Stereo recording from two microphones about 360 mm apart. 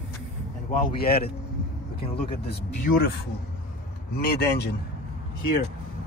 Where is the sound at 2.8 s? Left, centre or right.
Left.